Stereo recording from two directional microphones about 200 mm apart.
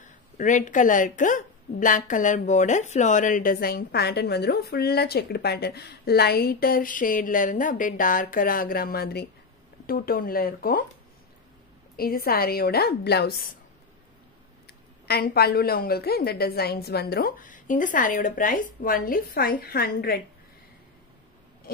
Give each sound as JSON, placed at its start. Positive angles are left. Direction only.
{"t": 0.4, "sound": "a woman's voice", "side_deg": 40}
{"t": 12.0, "sound": "a woman's voice", "side_deg": 50}
{"t": 15.0, "sound": "a woman's voice", "side_deg": 50}